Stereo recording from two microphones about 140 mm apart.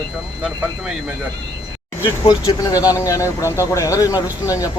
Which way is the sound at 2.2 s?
30° left (ahead or behind).